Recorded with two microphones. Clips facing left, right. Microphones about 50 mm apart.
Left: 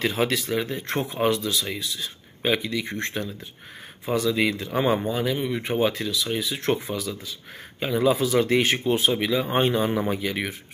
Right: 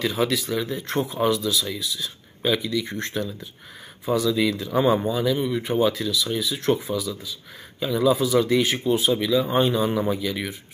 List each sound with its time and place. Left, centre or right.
0.0 s speech: left